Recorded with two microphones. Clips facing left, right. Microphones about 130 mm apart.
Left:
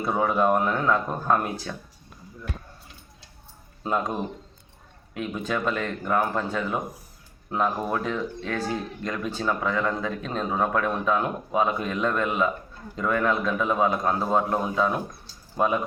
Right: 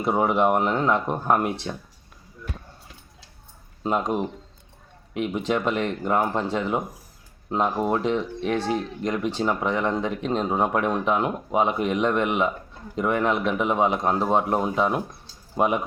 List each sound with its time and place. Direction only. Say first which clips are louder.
0.0 s speech: right 2 dB; 20° right (ahead or behind)
3.8 s speech: right 3 dB; 20° right (ahead or behind)